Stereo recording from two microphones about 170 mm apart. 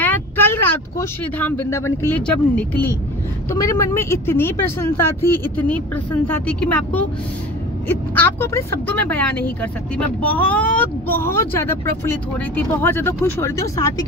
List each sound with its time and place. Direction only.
0.0 s speech: 10° left (ahead or behind)